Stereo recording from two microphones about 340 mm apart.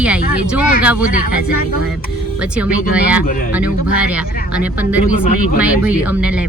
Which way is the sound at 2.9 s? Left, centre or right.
Centre.